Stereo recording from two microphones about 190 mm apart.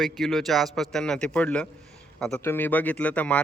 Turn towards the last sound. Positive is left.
turn(degrees=5)  # may be behind; listen again after turning